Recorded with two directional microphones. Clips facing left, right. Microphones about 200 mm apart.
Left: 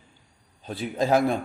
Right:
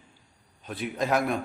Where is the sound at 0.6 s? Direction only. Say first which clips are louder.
Left 3 dB; 30° left (ahead or behind).